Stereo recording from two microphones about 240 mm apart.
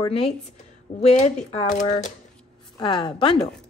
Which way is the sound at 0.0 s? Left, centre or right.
Left.